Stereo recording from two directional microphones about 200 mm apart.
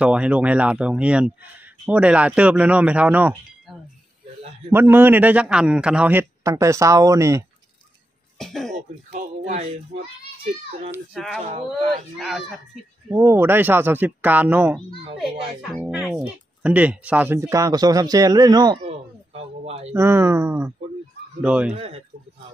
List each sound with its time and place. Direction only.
0.0 s a man's voice: 5° right (ahead or behind)
8.4 s speech: centre (ahead or behind)
11.1 s speech: centre (ahead or behind)
13.1 s a man's voice: 15° right (ahead or behind)
15.8 s a man's voice: 5° right (ahead or behind)
19.6 s speech: 30° right (ahead or behind)
19.9 s a man's voice: 15° right (ahead or behind)
21.7 s speech: 30° right (ahead or behind)